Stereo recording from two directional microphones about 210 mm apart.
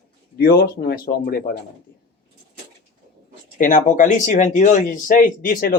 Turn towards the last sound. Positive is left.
turn(degrees=45)  # may be behind; listen again after turning